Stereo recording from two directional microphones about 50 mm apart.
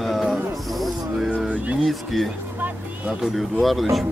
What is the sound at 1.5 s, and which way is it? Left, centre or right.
Speech, right.